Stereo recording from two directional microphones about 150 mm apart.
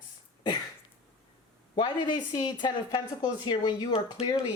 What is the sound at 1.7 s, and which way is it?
Speech, 30° left (ahead or behind).